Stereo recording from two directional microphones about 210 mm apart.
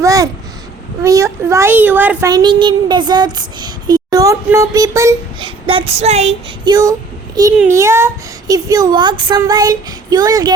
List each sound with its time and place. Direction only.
0.0 s babbling: 15° right (ahead or behind)
1.0 s a child's voice: 15° right (ahead or behind)
5.6 s child singing: 25° right (ahead or behind)
6.7 s a child's voice: 20° right (ahead or behind)